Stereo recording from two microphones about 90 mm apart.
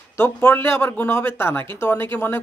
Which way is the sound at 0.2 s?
20° left (ahead or behind).